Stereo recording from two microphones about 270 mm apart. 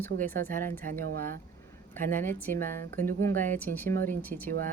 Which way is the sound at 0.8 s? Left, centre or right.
Right.